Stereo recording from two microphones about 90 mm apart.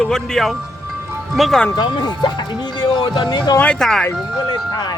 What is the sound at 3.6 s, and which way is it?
Speech, 10° left (ahead or behind).